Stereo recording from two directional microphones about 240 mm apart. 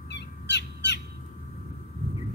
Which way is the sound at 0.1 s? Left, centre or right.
Left.